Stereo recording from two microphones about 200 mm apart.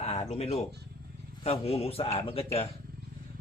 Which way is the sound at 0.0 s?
30° left (ahead or behind).